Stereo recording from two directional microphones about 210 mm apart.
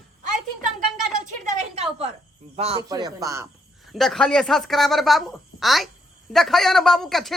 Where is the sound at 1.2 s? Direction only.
35° right (ahead or behind); by 3.4 s 15° right (ahead or behind).